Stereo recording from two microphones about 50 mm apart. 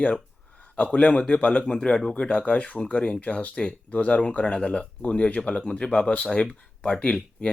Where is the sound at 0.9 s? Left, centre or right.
Left.